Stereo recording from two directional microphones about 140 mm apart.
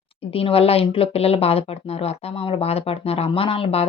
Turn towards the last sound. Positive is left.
turn(degrees=40)  # may be behind; listen again after turning